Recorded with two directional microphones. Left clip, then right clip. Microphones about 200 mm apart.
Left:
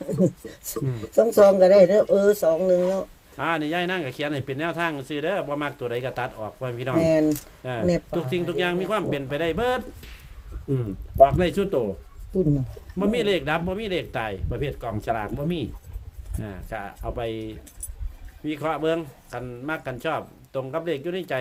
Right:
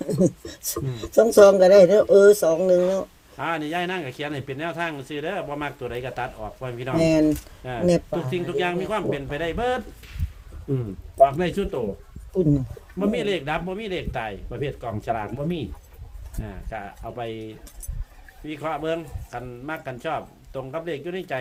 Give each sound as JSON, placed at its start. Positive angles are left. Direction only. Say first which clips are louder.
{"t": 0.2, "sound": "speech", "louder": "right 1 dB", "side_deg": -50}
{"t": 3.3, "sound": "a man's voice", "louder": "left 1 dB", "side_deg": 25}
{"t": 7.0, "sound": "speech", "louder": "right 1 dB", "side_deg": -50}
{"t": 7.6, "sound": "a man's voice", "louder": "right 3 dB", "side_deg": 25}
{"t": 13.0, "sound": "a man's voice", "louder": "left 2 dB", "side_deg": 25}